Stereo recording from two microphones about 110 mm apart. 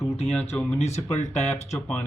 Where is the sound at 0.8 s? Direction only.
85° left.